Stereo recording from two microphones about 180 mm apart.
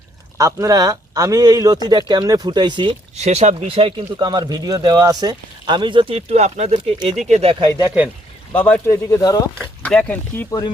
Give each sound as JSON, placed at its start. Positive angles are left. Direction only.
{"t": 0.3, "sound": "speech", "side_deg": -15}
{"t": 3.2, "sound": "speech", "side_deg": -35}
{"t": 8.5, "sound": "speech", "side_deg": 10}
{"t": 9.6, "sound": "speech", "side_deg": 5}